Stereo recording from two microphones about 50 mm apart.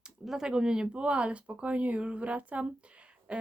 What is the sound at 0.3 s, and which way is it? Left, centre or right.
Speech, centre.